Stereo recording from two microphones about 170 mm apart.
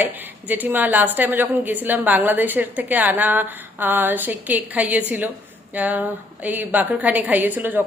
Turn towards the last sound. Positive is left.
turn(degrees=-10)  # may be behind; listen again after turning